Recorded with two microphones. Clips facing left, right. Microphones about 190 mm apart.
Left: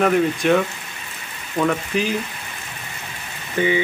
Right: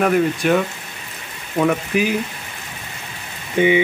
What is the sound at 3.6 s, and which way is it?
Speech, 15° right (ahead or behind).